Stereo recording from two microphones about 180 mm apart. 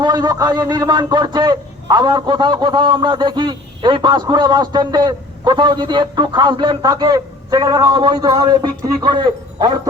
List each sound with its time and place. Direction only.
0.0 s speech: 20° right (ahead or behind)